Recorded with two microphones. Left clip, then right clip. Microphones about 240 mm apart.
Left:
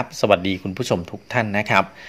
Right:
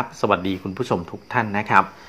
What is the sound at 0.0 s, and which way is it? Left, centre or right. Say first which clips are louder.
Speech: left 3 dB; left.